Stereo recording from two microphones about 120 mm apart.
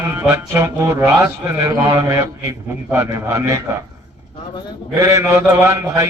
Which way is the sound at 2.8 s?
15° right (ahead or behind).